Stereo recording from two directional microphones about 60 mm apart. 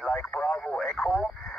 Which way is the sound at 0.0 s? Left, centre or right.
Centre.